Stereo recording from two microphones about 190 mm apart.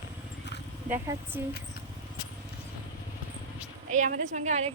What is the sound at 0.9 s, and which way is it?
Speech, 10° right (ahead or behind).